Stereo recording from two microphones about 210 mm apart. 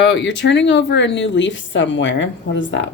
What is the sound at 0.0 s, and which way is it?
Speech, 55° left (ahead or behind).